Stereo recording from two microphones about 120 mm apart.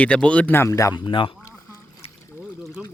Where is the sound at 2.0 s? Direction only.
60° left (ahead or behind).